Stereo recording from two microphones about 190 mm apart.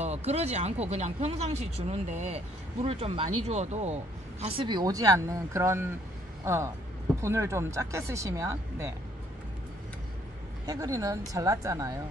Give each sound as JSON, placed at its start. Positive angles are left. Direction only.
{"t": 0.0, "sound": "speech", "side_deg": -35}
{"t": 10.6, "sound": "speech", "side_deg": -20}